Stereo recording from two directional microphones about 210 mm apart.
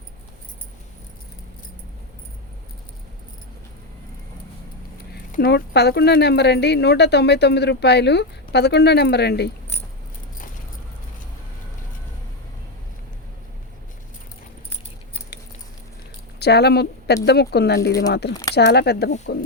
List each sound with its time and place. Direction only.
5.1 s speech: 50° left (ahead or behind)
16.4 s speech: 50° left (ahead or behind)